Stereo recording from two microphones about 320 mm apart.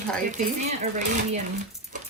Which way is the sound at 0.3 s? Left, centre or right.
Right.